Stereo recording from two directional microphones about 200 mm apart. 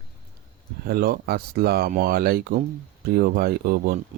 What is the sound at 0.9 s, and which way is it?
Speech, 50° right (ahead or behind).